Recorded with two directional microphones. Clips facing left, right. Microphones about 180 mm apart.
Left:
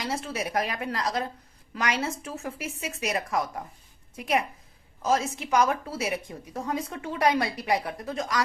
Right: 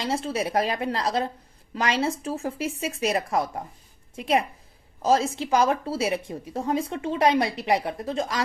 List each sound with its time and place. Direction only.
0.0 s a woman's voice: 30° right (ahead or behind)